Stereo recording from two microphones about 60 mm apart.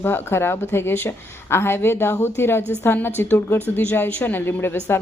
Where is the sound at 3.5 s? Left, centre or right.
Left.